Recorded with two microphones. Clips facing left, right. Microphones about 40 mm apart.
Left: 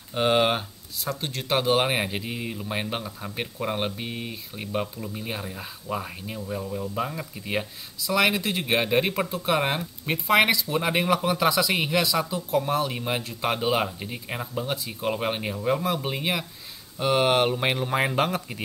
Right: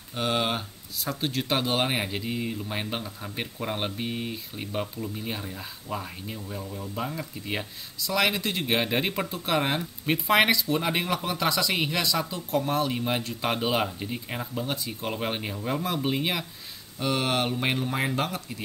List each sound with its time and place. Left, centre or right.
0.1 s speech: left
0.9 s speech: centre
17.0 s speech: centre
17.9 s speech: left